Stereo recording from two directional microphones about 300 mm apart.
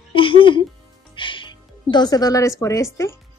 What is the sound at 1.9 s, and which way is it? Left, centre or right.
A woman's voice, centre.